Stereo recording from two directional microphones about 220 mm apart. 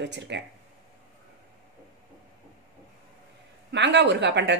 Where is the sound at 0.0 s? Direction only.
50° right (ahead or behind).